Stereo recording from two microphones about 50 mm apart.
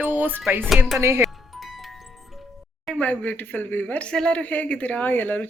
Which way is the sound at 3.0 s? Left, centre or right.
Left.